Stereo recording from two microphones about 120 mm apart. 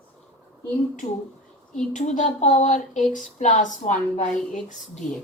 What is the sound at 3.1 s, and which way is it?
Speech, 90° left.